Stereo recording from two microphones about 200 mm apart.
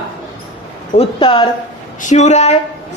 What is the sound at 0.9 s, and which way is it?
Speech, 25° left (ahead or behind).